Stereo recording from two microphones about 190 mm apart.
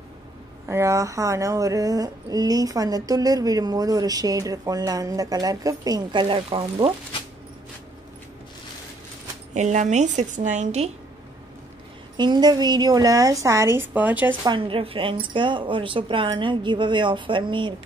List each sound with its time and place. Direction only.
0.7 s speech: 15° right (ahead or behind)
9.5 s speech: 40° right (ahead or behind)
12.2 s speech: 20° right (ahead or behind)
14.4 s speech: 25° right (ahead or behind)